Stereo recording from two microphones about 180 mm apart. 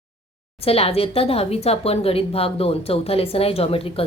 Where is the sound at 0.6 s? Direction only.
35° left (ahead or behind).